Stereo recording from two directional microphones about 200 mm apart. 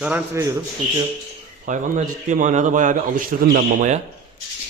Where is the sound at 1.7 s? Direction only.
40° right (ahead or behind).